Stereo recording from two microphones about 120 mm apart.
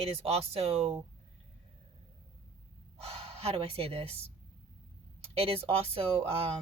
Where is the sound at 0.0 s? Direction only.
60° right (ahead or behind).